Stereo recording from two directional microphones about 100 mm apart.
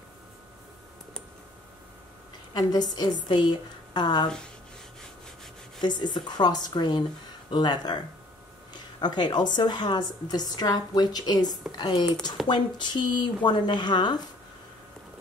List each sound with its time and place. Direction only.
2.5 s a woman's voice: 45° left (ahead or behind)
5.8 s a woman's voice: 45° left (ahead or behind)